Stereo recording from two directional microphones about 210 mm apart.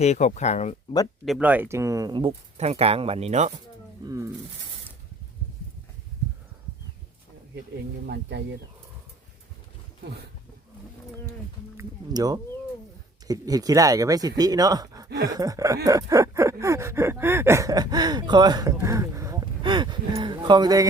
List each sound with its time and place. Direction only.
0.0 s speech: 35° left (ahead or behind)
1.2 s speech: 5° right (ahead or behind); by 3.5 s 30° right (ahead or behind)
4.0 s a sound: 15° right (ahead or behind)
8.0 s speech: 50° right (ahead or behind)
11.8 s music: 20° right (ahead or behind)
13.2 s a sound: 15° right (ahead or behind)